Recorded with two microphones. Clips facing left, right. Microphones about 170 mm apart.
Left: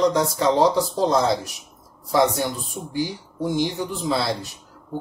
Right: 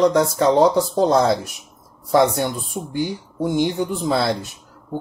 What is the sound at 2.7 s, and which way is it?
Speech, 60° right (ahead or behind).